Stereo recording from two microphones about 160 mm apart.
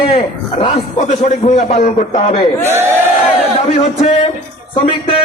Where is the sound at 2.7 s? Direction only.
15° right (ahead or behind).